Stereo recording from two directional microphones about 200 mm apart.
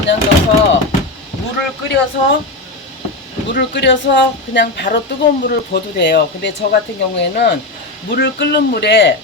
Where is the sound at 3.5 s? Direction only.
60° left (ahead or behind).